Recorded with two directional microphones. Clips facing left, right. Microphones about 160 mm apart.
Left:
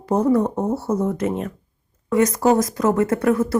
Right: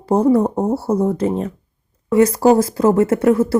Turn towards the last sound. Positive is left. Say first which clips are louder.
# right 4 dB
turn(degrees=-30)  # may be behind; listen again after turning